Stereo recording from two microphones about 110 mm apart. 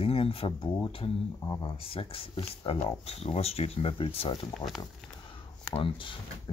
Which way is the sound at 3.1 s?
70° left (ahead or behind).